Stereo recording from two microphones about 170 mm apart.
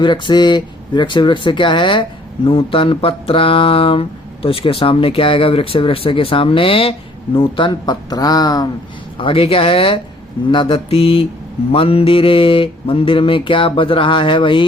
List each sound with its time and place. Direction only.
0.0 s speech: 25° left (ahead or behind)
4.4 s mantra: 30° left (ahead or behind)
7.3 s speech: 30° left (ahead or behind)
9.1 s mantra: 30° left (ahead or behind)